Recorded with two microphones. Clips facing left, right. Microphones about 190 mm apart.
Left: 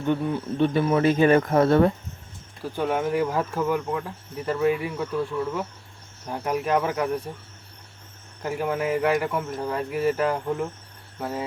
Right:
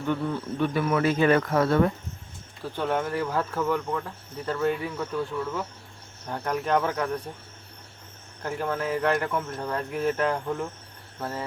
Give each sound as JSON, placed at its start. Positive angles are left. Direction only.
{"t": 0.0, "sound": "speech", "side_deg": 20}
{"t": 0.6, "sound": "speech", "side_deg": 25}
{"t": 2.7, "sound": "speech", "side_deg": 10}
{"t": 8.4, "sound": "speech", "side_deg": 10}